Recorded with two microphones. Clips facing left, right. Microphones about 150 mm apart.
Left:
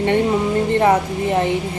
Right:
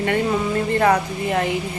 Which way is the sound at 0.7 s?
25° left (ahead or behind).